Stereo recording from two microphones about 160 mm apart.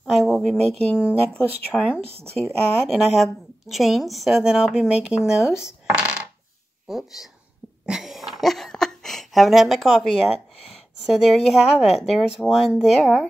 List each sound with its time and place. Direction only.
0.0 s speech: centre (ahead or behind)
2.0 s speech: 40° right (ahead or behind)
2.4 s a woman's voice: centre (ahead or behind)
7.8 s a sound: 5° right (ahead or behind)
11.2 s a woman's voice: centre (ahead or behind)